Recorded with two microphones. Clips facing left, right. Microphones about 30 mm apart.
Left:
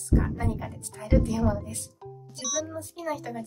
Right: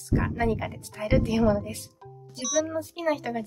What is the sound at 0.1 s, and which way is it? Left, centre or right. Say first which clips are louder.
Speech: right 2 dB; right.